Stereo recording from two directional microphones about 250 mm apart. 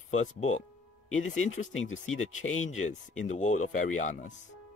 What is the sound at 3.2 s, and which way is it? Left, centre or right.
Speech, left.